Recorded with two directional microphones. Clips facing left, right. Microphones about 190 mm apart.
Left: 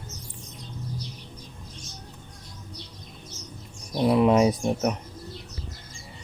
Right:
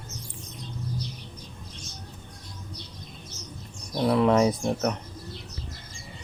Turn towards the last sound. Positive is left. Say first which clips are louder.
# left 1 dB
turn(degrees=15)  # may be behind; listen again after turning